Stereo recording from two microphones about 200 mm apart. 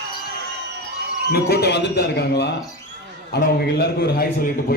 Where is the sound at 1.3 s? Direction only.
55° left (ahead or behind).